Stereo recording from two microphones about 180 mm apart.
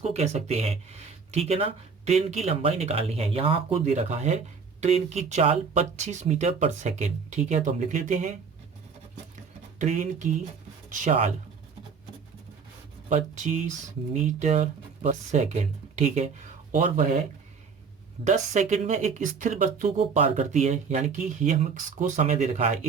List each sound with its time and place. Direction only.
0.0 s speech: 35° right (ahead or behind)
9.7 s speech: 40° right (ahead or behind)
13.1 s speech: 40° right (ahead or behind)
16.7 s speech: 50° right (ahead or behind)
18.3 s speech: 40° right (ahead or behind)
20.0 s speech: 35° right (ahead or behind)